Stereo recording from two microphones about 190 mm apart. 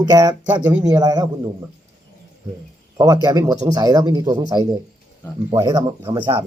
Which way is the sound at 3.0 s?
20° right (ahead or behind).